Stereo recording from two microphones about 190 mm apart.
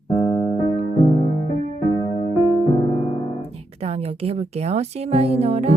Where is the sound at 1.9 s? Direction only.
20° left (ahead or behind).